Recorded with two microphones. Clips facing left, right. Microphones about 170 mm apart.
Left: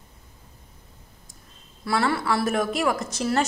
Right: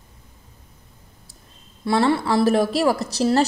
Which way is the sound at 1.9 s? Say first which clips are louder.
Right 5 dB; 25° right (ahead or behind).